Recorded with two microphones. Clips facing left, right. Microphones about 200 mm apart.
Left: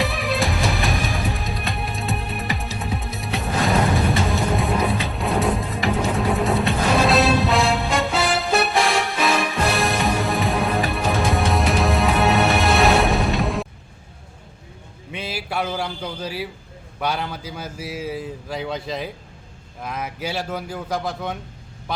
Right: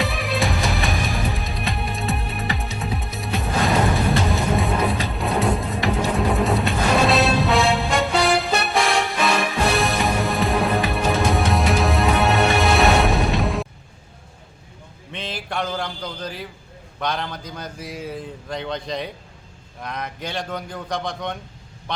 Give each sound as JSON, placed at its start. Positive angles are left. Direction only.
{"t": 0.0, "sound": "music", "side_deg": 0}
{"t": 15.1, "sound": "a sound", "side_deg": 10}
{"t": 17.0, "sound": "a man's voice", "side_deg": 5}